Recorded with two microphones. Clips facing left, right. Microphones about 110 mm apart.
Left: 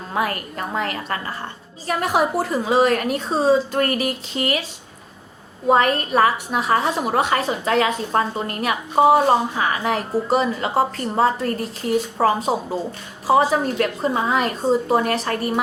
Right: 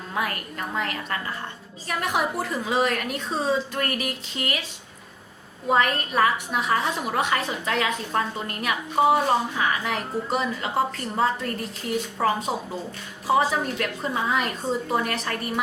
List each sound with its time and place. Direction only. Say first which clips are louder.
0.1 s a woman's voice: left 5 dB; 35° left (ahead or behind)
5.6 s a woman's voice: left 5 dB; 35° left (ahead or behind)